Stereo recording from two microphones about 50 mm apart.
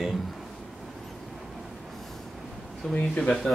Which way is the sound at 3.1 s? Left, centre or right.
Centre.